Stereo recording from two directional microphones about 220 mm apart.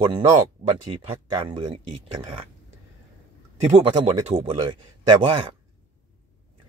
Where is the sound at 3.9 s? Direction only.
25° right (ahead or behind).